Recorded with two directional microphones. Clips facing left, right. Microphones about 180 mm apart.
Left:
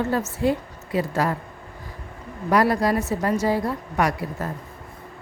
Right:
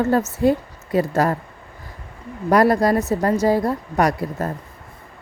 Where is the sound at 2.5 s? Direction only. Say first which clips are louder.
Right 4 dB; 45° right (ahead or behind).